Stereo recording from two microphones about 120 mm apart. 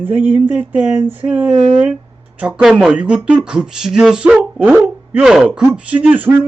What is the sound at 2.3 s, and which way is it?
A man's voice, 10° right (ahead or behind).